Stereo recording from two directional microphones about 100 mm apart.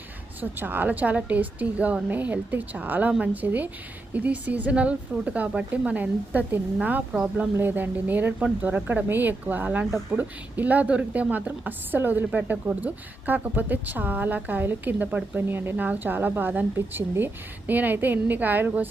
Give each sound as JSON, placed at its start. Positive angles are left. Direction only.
{"t": 0.6, "sound": "speech", "side_deg": -20}